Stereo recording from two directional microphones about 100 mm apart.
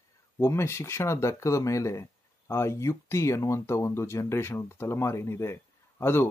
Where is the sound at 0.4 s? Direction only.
25° left (ahead or behind).